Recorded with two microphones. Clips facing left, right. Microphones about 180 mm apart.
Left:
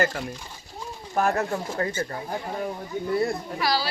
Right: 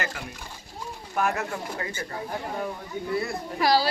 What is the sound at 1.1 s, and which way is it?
Speech, 35° left (ahead or behind).